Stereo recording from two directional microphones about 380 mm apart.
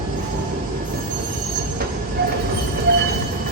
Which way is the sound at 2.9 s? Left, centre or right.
Right.